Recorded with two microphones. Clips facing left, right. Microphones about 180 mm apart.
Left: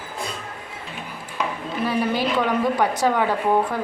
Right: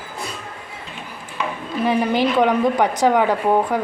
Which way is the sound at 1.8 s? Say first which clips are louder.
Right 4 dB; 20° right (ahead or behind).